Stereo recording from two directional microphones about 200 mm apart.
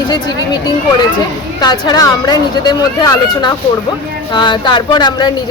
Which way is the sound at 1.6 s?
20° left (ahead or behind).